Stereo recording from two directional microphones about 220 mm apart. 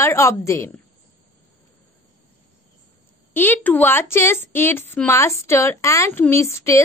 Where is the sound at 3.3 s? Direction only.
10° left (ahead or behind).